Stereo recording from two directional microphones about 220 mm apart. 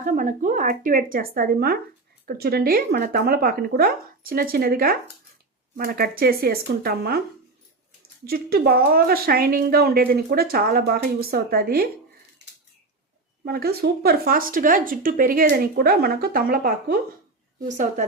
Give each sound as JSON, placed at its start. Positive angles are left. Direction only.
{"t": 0.0, "sound": "speech", "side_deg": -35}
{"t": 8.3, "sound": "speech", "side_deg": -45}
{"t": 13.4, "sound": "speech", "side_deg": -45}